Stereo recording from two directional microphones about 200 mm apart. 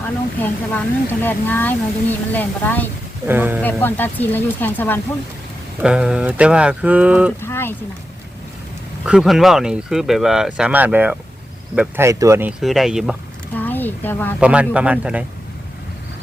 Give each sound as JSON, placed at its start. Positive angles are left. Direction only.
{"t": 0.0, "sound": "speech", "side_deg": 10}
{"t": 3.2, "sound": "speech", "side_deg": -10}
{"t": 3.6, "sound": "speech", "side_deg": 10}
{"t": 5.8, "sound": "speech", "side_deg": -5}
{"t": 7.4, "sound": "boat", "side_deg": 10}
{"t": 9.0, "sound": "speech", "side_deg": 0}
{"t": 13.5, "sound": "speech", "side_deg": 10}
{"t": 14.3, "sound": "speech", "side_deg": -5}